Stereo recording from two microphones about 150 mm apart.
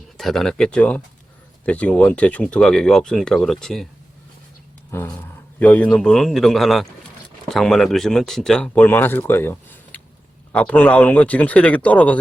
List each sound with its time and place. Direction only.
0.2 s speech: centre (ahead or behind)
4.9 s speech: 15° left (ahead or behind)